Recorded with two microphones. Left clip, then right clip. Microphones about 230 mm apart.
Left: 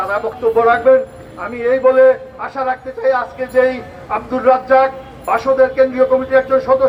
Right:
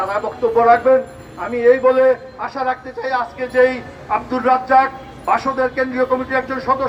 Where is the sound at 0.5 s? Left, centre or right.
Right.